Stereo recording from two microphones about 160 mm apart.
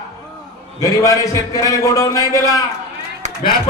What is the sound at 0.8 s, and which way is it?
A man's voice, 20° left (ahead or behind).